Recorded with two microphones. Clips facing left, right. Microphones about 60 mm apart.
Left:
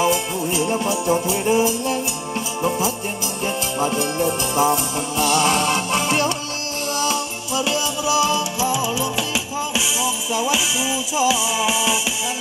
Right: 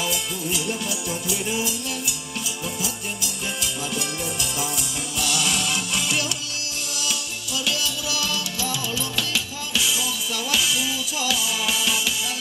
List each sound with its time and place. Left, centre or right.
0.0 s music: left
3.8 s music: left; by 12.0 s centre